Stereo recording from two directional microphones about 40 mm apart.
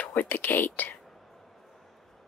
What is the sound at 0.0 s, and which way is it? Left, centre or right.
Speech, left.